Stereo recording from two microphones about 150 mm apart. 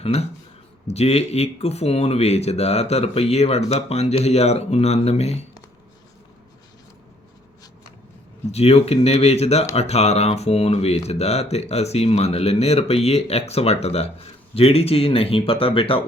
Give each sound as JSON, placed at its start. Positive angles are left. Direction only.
{"t": 0.0, "sound": "speech", "side_deg": 45}
{"t": 8.5, "sound": "speech", "side_deg": 45}